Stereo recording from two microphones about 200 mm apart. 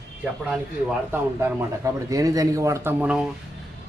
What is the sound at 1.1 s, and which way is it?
Speech, 15° right (ahead or behind).